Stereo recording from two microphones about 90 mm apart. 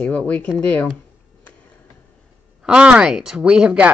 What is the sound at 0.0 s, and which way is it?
Speech, 15° left (ahead or behind).